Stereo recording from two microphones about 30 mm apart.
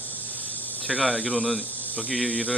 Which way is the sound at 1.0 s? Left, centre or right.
Left.